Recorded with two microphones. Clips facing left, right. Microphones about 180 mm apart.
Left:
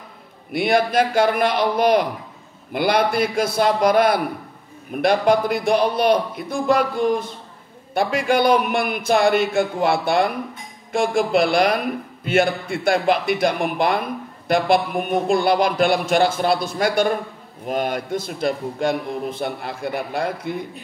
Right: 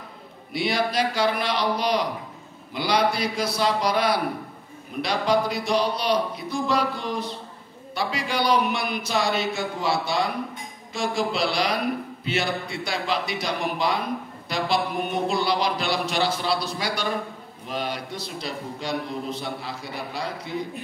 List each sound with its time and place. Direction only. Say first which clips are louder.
0.5 s a man's voice: left 6 dB; 55° left (ahead or behind)